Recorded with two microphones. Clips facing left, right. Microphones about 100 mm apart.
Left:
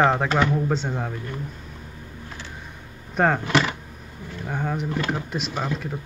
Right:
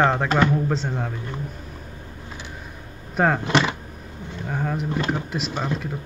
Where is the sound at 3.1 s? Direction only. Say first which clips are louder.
Even; centre (ahead or behind).